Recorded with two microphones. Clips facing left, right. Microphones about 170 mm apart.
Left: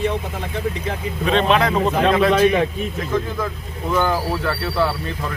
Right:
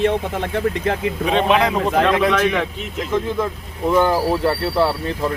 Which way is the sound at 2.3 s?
20° left (ahead or behind).